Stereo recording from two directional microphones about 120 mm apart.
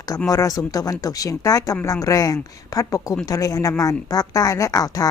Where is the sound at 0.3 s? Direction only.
30° left (ahead or behind).